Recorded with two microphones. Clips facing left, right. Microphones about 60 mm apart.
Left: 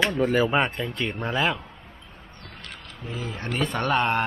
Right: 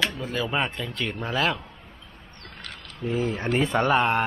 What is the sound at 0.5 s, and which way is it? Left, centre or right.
Speech, centre.